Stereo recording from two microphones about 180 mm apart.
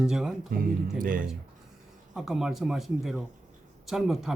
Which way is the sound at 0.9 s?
50° right (ahead or behind).